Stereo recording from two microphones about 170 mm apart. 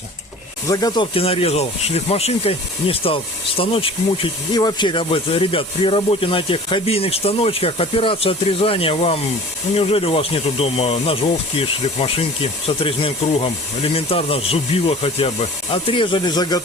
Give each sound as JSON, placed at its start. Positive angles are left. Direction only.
{"t": 0.7, "sound": "speech", "side_deg": 20}
{"t": 1.1, "sound": "speech", "side_deg": 35}